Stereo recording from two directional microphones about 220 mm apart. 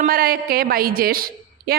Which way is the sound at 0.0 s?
45° right (ahead or behind).